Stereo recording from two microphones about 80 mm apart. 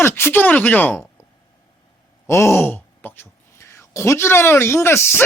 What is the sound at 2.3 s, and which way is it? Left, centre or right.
Speech, left.